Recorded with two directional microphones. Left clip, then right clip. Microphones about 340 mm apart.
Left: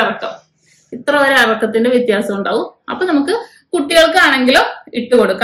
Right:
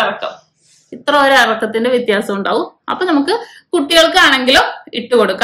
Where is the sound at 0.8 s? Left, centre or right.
Centre.